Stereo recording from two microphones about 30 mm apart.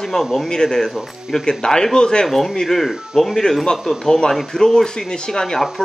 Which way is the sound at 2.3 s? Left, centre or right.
Centre.